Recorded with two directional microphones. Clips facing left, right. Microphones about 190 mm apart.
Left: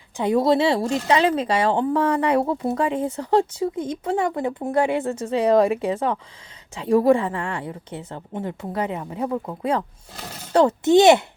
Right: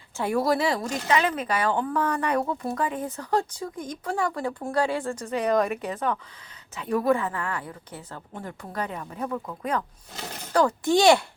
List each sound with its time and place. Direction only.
0.2 s speech: 20° left (ahead or behind)